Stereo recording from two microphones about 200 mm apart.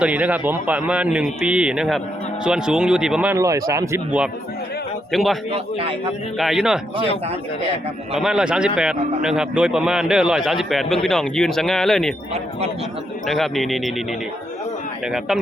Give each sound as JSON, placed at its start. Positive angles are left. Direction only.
{"t": 0.0, "sound": "a man's voice", "side_deg": -5}
{"t": 5.1, "sound": "a man's voice", "side_deg": 0}
{"t": 5.5, "sound": "a man's voice", "side_deg": -30}
{"t": 6.3, "sound": "a man's voice", "side_deg": 0}
{"t": 8.1, "sound": "a man's voice", "side_deg": -5}
{"t": 13.2, "sound": "a man's voice", "side_deg": 0}